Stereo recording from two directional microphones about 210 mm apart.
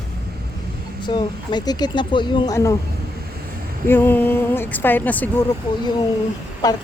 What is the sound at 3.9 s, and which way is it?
Speech, 10° left (ahead or behind).